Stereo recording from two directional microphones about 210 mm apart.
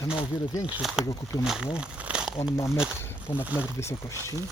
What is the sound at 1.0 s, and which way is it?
Speech, 15° left (ahead or behind).